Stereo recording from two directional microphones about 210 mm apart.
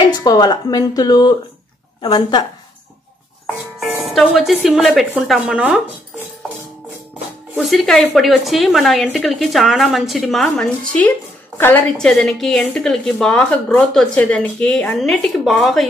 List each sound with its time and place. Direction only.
0.0 s speech: 20° left (ahead or behind)
3.9 s a woman's voice: centre (ahead or behind)
7.5 s a woman's voice: centre (ahead or behind)